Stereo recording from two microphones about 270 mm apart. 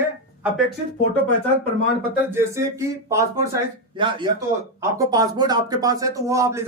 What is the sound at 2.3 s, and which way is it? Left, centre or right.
Speech, centre.